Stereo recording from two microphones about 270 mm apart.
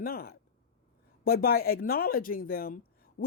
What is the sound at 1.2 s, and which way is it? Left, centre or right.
Speech, left.